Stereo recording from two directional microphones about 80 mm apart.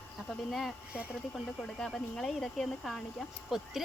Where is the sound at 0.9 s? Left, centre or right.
Centre.